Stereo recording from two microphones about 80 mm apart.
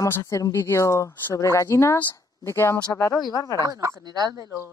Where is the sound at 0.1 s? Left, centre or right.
Left.